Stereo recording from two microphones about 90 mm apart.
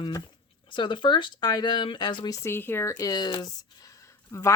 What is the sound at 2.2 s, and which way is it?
Speech, 30° left (ahead or behind).